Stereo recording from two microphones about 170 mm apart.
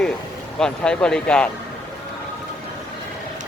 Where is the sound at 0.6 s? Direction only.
5° left (ahead or behind).